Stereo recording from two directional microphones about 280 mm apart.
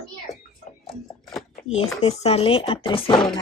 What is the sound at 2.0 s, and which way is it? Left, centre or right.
Speech, left.